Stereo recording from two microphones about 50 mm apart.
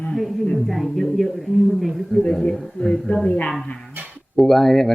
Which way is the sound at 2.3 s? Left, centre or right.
Centre.